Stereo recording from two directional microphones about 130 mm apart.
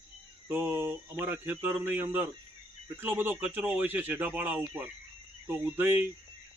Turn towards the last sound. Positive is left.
turn(degrees=-15)  # may be behind; listen again after turning